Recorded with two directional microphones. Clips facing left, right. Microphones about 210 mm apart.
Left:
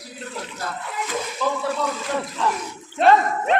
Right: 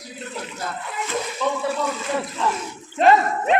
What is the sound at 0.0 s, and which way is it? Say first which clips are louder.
Speech: right 1 dB; 5° right (ahead or behind).